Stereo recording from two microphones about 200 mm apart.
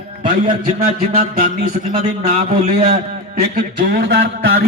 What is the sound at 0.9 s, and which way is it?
Music, 30° right (ahead or behind).